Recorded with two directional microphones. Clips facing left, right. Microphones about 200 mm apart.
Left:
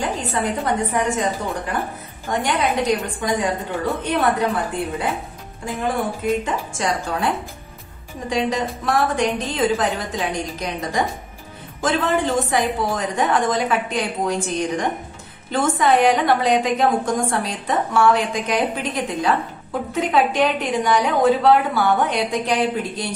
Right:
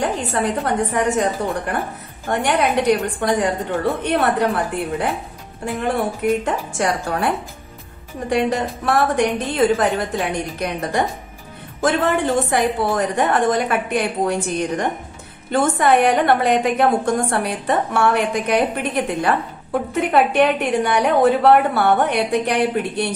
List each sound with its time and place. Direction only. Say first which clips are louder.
0.0 s a woman's voice: right 2 dB; 65° right (ahead or behind)
2.2 s a woman's voice: right 2 dB; 65° right (ahead or behind)